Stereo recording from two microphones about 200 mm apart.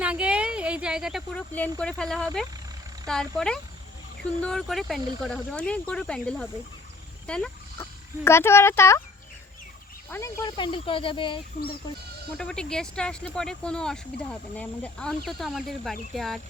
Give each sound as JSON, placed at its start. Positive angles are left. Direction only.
{"t": 0.0, "sound": "a sound", "side_deg": -5}
{"t": 1.8, "sound": "speech", "side_deg": 5}
{"t": 10.1, "sound": "speech", "side_deg": 10}
{"t": 12.4, "sound": "speech", "side_deg": 5}